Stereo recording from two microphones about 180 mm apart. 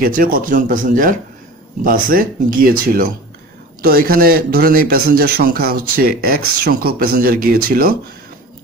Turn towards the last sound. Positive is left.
turn(degrees=-55)  # may be behind; listen again after turning